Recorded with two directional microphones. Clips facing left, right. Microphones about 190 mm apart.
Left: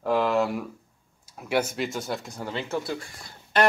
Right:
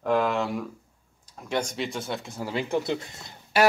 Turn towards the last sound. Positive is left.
turn(degrees=-10)  # may be behind; listen again after turning